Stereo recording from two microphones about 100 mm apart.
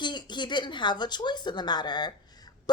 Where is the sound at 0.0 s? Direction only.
50° left (ahead or behind).